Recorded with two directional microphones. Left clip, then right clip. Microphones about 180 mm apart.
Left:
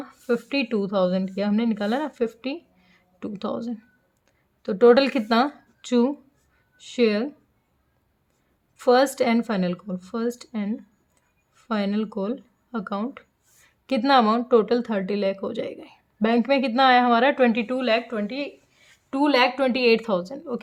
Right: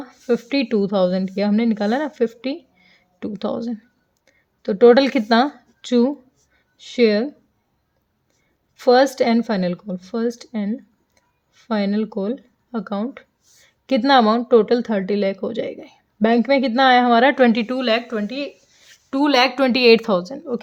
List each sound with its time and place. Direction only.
0.0 s a woman's voice: 25° right (ahead or behind)
8.7 s a woman's voice: 20° right (ahead or behind)